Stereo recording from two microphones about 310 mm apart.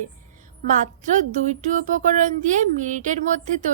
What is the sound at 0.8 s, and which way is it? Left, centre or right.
A woman's voice, right.